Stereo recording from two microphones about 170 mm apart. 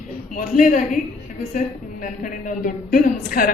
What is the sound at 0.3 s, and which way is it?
A woman's voice, 50° left (ahead or behind).